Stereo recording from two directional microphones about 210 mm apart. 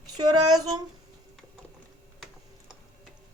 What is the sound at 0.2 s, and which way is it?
Speech, 20° right (ahead or behind).